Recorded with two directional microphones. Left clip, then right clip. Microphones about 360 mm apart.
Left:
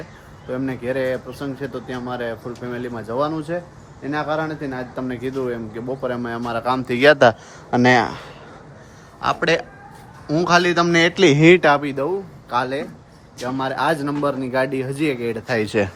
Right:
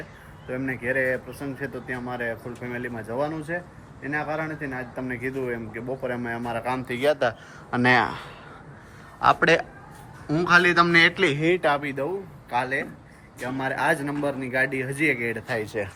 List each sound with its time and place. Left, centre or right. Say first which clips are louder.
0.5 s speech: left 2 dB; centre
7.7 s a man's voice: left 5 dB; centre
15.5 s speech: left 8 dB; left